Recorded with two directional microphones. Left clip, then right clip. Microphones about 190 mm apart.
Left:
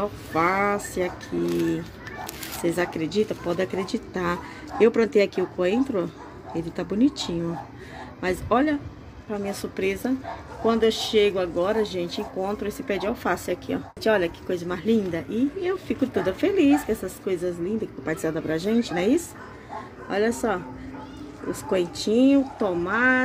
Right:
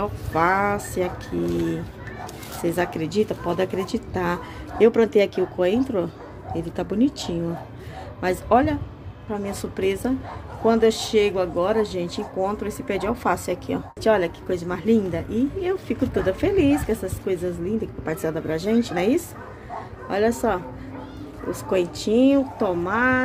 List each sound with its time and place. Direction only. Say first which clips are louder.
0.0 s a woman's voice: right 2 dB; 10° left (ahead or behind)